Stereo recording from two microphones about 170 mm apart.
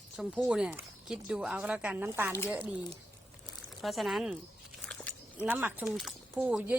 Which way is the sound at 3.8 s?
Centre (ahead or behind).